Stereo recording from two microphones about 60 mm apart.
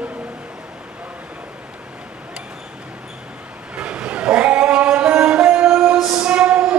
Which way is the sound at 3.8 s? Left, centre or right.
Right.